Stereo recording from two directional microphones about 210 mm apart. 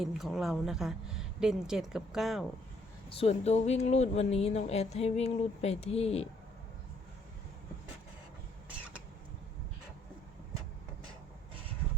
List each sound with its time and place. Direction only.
0.0 s a woman's voice: centre (ahead or behind)
3.2 s speech: 30° left (ahead or behind)